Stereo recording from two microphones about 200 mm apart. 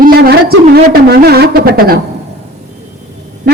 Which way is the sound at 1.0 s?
50° right (ahead or behind).